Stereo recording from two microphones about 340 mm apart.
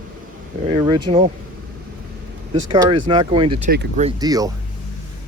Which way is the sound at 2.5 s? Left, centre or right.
Centre.